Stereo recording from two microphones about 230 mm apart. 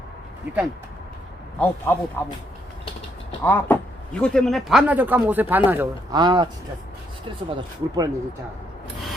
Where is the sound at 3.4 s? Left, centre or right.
Centre.